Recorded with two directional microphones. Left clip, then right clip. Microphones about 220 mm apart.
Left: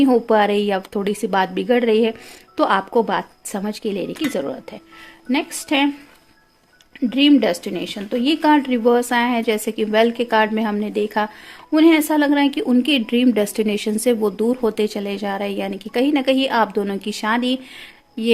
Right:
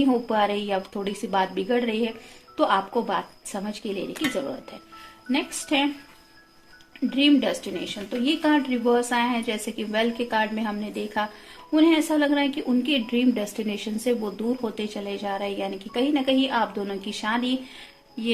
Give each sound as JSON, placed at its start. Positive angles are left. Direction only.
{"t": 0.0, "sound": "speech", "side_deg": 50}
{"t": 7.1, "sound": "speech", "side_deg": 50}